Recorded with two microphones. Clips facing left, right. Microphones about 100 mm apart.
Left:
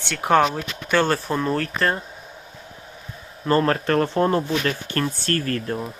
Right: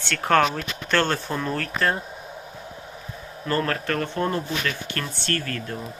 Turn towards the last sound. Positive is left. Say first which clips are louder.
# left 4 dB
turn(degrees=35)  # may be behind; listen again after turning